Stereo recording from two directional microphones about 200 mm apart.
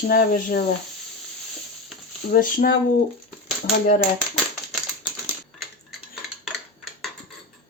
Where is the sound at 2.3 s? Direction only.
45° left (ahead or behind).